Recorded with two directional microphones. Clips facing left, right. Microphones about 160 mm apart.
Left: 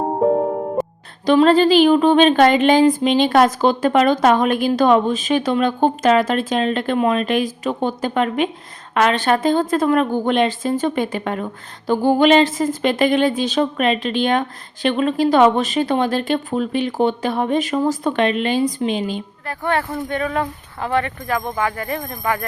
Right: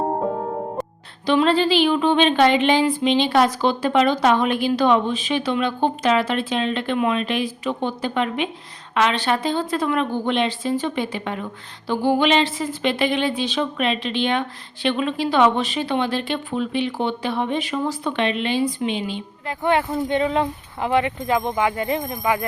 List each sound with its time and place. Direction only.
0.8 s music: 5° left (ahead or behind)
1.3 s speech: 45° left (ahead or behind)
19.5 s speech: 20° right (ahead or behind)